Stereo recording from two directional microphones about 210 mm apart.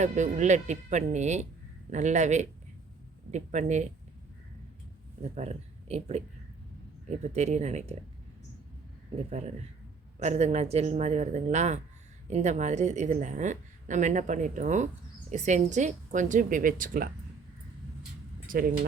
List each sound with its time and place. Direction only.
0.0 s a woman's voice: 35° right (ahead or behind)
5.2 s speech: 30° right (ahead or behind)
7.3 s a woman's voice: 35° right (ahead or behind)
10.2 s a woman's voice: 30° right (ahead or behind)
18.4 s speech: 40° right (ahead or behind)